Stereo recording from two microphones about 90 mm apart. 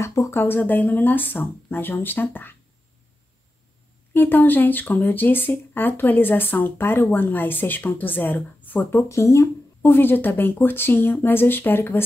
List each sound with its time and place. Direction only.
0.0 s speech: 35° left (ahead or behind)
4.1 s speech: 20° left (ahead or behind)
8.9 s speech: 30° left (ahead or behind)